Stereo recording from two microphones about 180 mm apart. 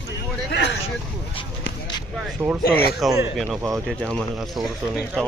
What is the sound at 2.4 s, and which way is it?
Speech, 15° right (ahead or behind).